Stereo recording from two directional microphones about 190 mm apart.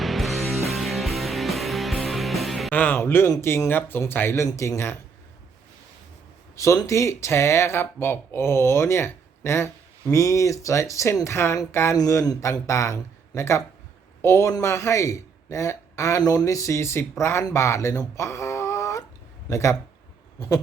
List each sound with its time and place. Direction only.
0.0 s music: centre (ahead or behind)
6.6 s a man's voice: 15° left (ahead or behind)